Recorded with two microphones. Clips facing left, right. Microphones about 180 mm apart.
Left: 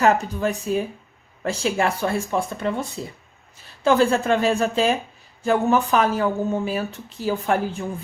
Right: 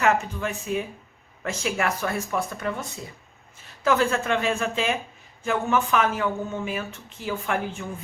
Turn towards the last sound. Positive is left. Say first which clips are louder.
# left 5 dB
turn(degrees=35)  # may be behind; listen again after turning